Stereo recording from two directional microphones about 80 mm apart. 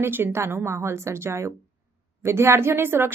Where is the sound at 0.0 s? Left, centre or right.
Right.